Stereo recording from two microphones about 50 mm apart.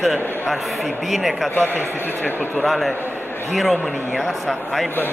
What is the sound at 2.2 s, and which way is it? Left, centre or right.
Speech, left.